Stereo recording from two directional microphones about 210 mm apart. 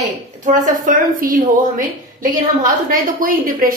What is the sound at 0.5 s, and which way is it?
A woman's voice, 40° right (ahead or behind).